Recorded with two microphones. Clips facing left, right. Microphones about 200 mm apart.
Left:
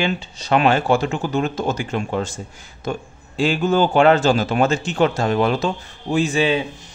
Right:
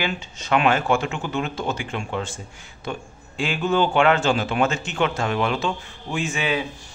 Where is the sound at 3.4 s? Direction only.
40° left (ahead or behind).